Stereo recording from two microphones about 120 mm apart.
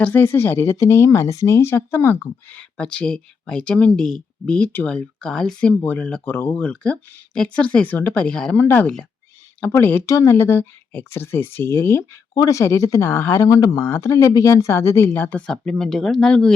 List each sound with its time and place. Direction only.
0.0 s speech: 15° left (ahead or behind)
12.3 s speech: 30° left (ahead or behind); by 16.5 s 5° left (ahead or behind)